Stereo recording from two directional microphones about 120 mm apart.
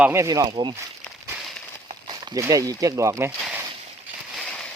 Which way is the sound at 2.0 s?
35° right (ahead or behind).